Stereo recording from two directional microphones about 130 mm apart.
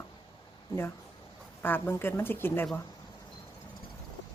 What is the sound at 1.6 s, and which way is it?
Speech, 15° left (ahead or behind).